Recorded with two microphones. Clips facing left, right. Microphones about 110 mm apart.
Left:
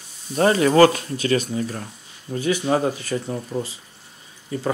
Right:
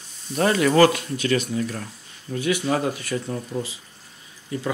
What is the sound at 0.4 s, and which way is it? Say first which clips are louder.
Speech: left 2 dB; 35° left (ahead or behind).